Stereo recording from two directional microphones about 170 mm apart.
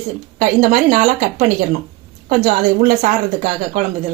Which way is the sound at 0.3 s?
50° right (ahead or behind).